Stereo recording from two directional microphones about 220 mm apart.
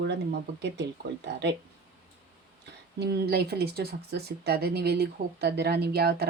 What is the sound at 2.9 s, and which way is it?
Speech, 50° right (ahead or behind).